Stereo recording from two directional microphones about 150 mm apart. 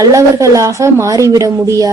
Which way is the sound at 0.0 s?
20° right (ahead or behind).